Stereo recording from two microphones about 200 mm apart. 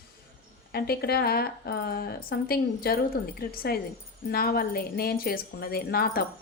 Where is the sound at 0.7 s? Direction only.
50° left (ahead or behind).